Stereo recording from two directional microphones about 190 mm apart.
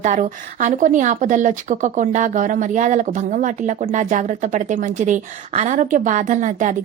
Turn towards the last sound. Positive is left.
turn(degrees=-40)  # may be behind; listen again after turning